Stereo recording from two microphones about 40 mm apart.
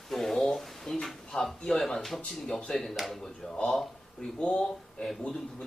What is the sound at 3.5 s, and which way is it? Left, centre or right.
Speech, left.